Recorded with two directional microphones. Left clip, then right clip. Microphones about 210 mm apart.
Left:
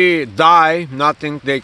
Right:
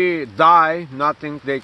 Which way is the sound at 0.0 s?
45° left (ahead or behind).